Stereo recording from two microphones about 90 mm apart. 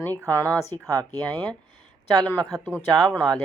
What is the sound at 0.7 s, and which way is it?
Speech, 55° right (ahead or behind).